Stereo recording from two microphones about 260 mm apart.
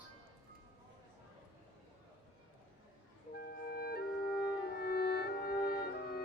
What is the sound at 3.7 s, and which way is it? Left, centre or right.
Music, left.